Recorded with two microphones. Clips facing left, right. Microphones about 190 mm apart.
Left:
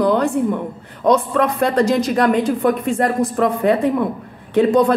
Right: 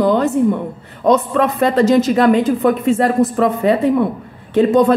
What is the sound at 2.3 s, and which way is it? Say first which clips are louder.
Speech: right 2 dB; 20° right (ahead or behind).